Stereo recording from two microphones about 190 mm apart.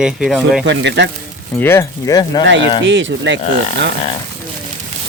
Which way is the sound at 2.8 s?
70° right (ahead or behind).